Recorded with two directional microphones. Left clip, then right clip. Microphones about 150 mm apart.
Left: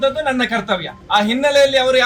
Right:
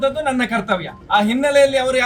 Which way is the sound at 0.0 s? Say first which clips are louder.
Left 2 dB; 10° right (ahead or behind).